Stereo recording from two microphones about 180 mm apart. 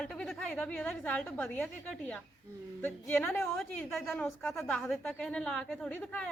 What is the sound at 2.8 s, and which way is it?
A woman's voice, 10° left (ahead or behind).